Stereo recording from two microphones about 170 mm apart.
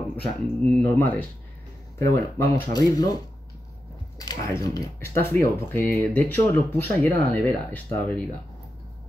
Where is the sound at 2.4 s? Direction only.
20° left (ahead or behind).